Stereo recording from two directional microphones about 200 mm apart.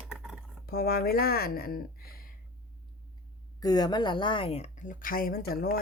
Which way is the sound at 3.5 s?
20° left (ahead or behind).